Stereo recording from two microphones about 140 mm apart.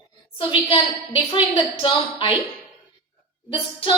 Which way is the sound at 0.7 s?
35° left (ahead or behind).